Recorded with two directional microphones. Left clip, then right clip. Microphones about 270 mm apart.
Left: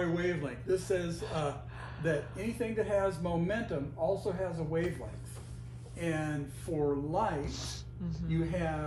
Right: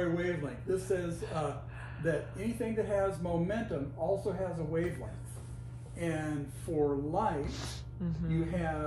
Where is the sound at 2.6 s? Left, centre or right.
Centre.